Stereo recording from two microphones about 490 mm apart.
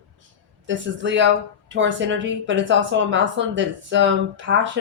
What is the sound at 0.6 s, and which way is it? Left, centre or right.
Speech, right.